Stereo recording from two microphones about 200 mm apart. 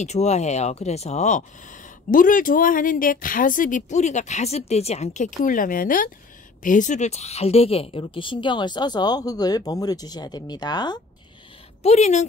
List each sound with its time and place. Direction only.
0.0 s a woman's voice: 35° left (ahead or behind)
11.8 s speech: 35° left (ahead or behind)